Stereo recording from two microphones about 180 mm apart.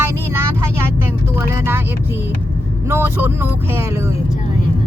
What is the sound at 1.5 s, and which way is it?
Speech, 10° right (ahead or behind).